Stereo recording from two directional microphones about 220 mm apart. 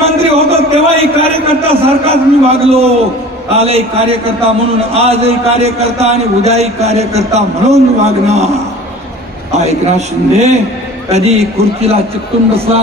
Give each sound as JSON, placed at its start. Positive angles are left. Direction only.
{"t": 0.0, "sound": "a sound", "side_deg": -25}
{"t": 3.5, "sound": "a man's voice", "side_deg": -25}
{"t": 9.6, "sound": "a man's voice", "side_deg": -30}